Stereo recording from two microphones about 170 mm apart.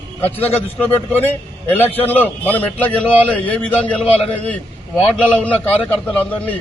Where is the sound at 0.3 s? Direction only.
35° left (ahead or behind).